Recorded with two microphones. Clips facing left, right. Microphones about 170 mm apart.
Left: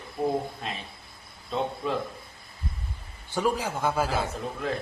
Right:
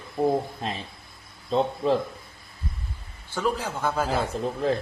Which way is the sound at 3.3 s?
15° left (ahead or behind).